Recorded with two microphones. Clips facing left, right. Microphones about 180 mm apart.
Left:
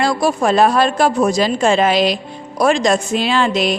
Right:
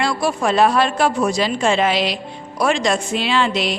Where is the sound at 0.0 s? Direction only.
40° left (ahead or behind).